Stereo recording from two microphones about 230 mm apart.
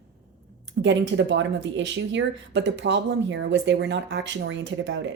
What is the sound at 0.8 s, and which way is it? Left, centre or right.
Speech, right.